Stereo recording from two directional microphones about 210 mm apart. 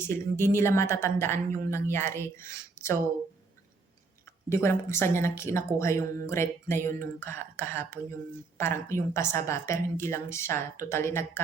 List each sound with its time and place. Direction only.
0.0 s speech: 10° left (ahead or behind)
4.4 s speech: 10° left (ahead or behind)